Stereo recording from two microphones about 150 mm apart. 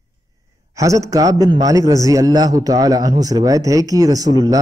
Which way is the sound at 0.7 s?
20° right (ahead or behind).